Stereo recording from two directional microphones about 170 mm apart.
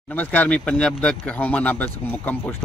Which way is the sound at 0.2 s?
10° left (ahead or behind).